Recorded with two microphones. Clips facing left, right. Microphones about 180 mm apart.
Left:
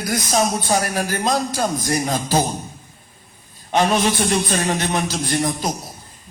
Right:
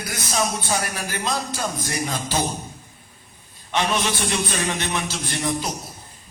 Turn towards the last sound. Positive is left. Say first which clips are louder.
# left 4 dB
turn(degrees=40)  # may be behind; listen again after turning